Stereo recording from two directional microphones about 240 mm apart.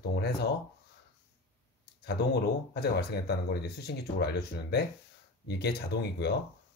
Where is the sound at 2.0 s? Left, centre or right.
Left.